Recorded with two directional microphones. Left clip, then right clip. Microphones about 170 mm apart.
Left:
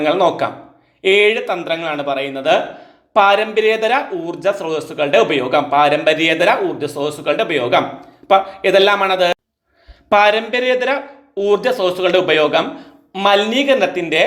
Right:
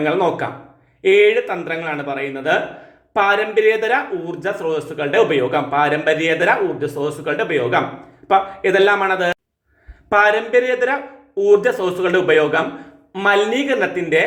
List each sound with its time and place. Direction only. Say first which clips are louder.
0.0 s speech: left 3 dB; 25° left (ahead or behind)